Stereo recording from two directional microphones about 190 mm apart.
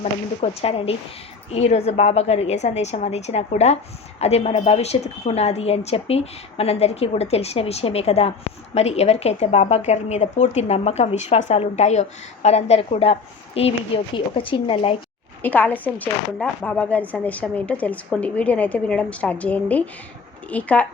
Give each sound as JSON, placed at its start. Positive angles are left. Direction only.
{"t": 0.0, "sound": "speech", "side_deg": 30}
{"t": 15.4, "sound": "speech", "side_deg": 10}